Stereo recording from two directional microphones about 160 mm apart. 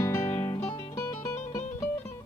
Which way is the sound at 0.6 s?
40° left (ahead or behind).